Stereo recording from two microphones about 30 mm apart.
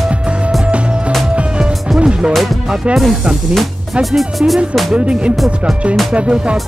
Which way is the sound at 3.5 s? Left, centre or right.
Centre.